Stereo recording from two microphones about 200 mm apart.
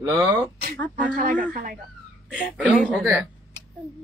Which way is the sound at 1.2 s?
40° right (ahead or behind).